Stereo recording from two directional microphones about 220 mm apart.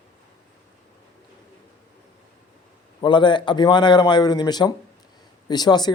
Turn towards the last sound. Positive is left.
turn(degrees=20)  # may be behind; listen again after turning